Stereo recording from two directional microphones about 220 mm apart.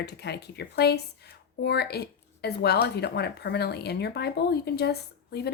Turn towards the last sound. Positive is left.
turn(degrees=45)  # may be behind; listen again after turning